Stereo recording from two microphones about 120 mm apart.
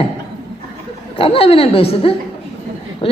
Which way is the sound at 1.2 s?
50° left (ahead or behind).